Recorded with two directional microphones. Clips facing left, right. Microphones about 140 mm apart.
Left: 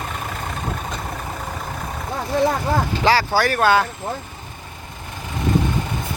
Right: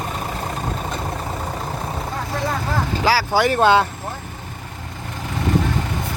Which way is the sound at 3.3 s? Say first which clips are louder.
Right 2 dB; 20° right (ahead or behind).